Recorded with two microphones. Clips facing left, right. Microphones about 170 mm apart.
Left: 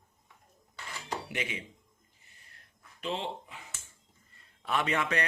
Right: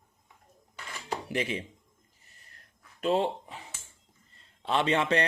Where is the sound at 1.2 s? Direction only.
35° right (ahead or behind).